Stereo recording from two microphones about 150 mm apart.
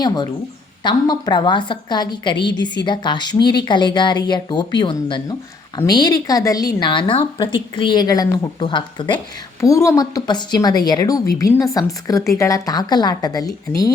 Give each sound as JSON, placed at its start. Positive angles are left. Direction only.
{"t": 0.0, "sound": "a woman's voice", "side_deg": 30}
{"t": 9.1, "sound": "a woman's voice", "side_deg": 20}